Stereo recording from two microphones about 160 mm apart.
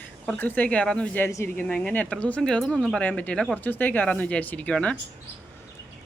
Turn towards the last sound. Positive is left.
turn(degrees=10)  # may be behind; listen again after turning